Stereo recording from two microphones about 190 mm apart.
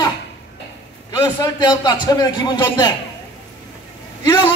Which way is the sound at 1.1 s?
20° left (ahead or behind).